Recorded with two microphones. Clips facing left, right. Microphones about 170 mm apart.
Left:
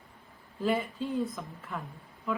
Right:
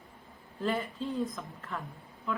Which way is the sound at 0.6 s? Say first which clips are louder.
Left 2 dB; centre (ahead or behind).